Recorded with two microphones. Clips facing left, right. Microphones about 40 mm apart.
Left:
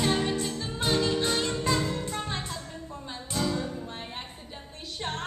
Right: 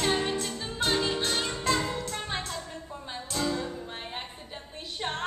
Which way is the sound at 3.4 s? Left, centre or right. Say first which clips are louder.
Even; centre.